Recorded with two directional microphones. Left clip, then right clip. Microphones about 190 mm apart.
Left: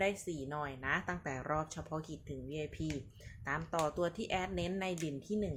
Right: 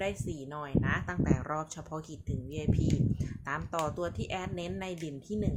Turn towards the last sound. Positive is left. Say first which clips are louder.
# right 1 dB
turn(degrees=-5)  # may be behind; listen again after turning